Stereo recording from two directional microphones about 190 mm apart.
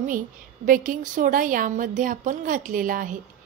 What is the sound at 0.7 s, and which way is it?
A woman's voice, 45° right (ahead or behind).